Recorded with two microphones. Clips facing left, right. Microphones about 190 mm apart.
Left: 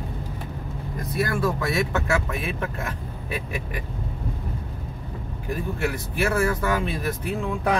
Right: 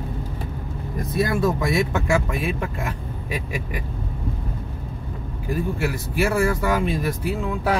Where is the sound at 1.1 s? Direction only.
20° right (ahead or behind).